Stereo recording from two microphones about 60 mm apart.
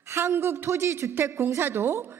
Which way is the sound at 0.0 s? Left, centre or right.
Right.